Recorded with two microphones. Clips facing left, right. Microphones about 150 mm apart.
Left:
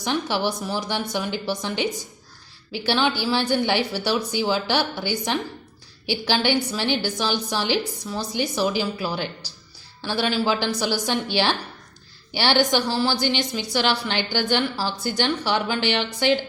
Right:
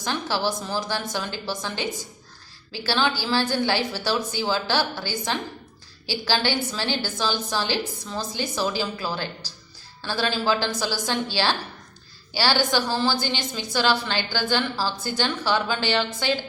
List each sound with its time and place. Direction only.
0.0 s a woman's voice: 15° left (ahead or behind)